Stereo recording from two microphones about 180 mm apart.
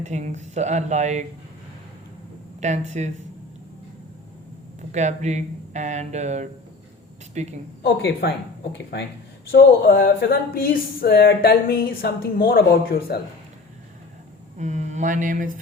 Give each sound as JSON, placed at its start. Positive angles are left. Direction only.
{"t": 0.0, "sound": "speech", "side_deg": -40}
{"t": 2.6, "sound": "speech", "side_deg": -40}
{"t": 4.9, "sound": "speech", "side_deg": -40}
{"t": 7.8, "sound": "speech", "side_deg": 65}
{"t": 9.5, "sound": "speech", "side_deg": 55}
{"t": 14.6, "sound": "mantra", "side_deg": -40}